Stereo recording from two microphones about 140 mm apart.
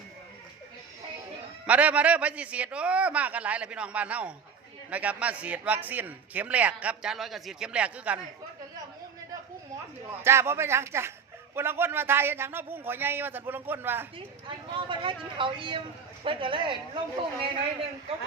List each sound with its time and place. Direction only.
1.6 s a man's voice: 10° right (ahead or behind)
10.1 s a man's voice: 20° right (ahead or behind)
14.4 s speech: 35° right (ahead or behind)